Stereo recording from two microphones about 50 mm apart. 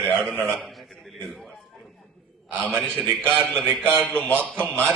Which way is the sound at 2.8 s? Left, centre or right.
Left.